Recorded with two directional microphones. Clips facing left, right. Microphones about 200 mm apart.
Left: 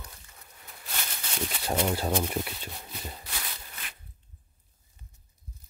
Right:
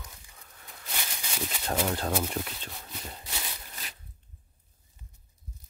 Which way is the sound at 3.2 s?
15° right (ahead or behind).